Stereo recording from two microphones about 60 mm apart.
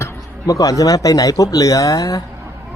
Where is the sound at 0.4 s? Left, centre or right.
Left.